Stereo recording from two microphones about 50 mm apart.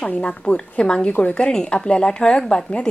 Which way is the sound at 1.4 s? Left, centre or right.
Centre.